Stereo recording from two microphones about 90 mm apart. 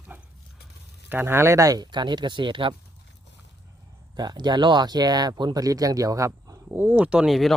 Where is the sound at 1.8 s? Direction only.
55° right (ahead or behind).